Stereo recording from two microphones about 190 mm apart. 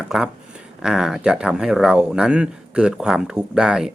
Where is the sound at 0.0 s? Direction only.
5° right (ahead or behind).